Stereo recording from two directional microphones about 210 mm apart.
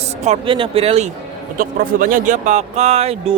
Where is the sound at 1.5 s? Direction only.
40° right (ahead or behind).